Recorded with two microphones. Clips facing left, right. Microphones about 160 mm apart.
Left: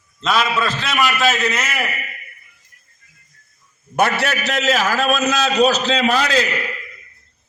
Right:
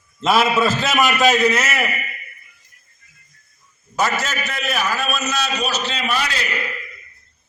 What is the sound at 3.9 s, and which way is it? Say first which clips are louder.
A man's voice: left 3 dB; 60° left (ahead or behind).